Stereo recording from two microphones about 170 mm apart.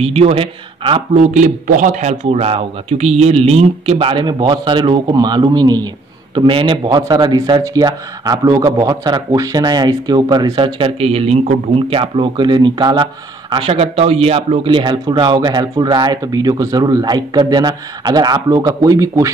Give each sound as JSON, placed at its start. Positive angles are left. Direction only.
{"t": 0.0, "sound": "a man's voice", "side_deg": -35}
{"t": 1.2, "sound": "a man's voice", "side_deg": -50}